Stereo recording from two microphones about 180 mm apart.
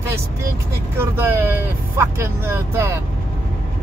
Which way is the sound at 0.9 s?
15° right (ahead or behind).